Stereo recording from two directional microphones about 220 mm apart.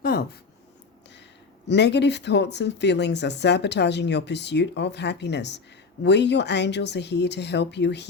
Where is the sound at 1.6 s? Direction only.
50° left (ahead or behind).